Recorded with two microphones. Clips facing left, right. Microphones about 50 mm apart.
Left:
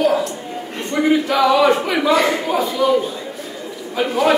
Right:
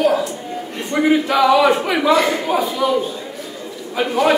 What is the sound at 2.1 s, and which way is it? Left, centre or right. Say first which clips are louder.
Speech: left 1 dB; left.